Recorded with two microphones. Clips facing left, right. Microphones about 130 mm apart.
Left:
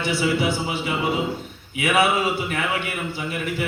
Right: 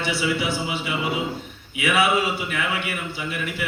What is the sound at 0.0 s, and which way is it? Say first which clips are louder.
Music: left 3 dB; 45° left (ahead or behind).